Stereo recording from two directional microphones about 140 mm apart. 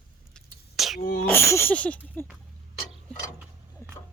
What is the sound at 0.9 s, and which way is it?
Speech, 90° left.